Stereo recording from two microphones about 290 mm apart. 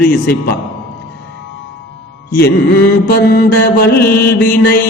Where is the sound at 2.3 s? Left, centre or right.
Left.